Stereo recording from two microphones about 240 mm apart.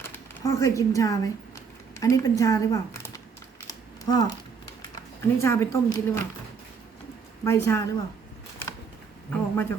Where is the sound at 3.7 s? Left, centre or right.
Centre.